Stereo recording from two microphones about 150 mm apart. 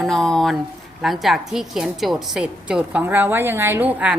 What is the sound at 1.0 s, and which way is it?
A woman's voice, centre (ahead or behind).